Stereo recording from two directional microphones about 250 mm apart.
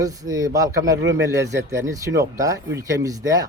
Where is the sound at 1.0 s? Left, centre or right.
Right.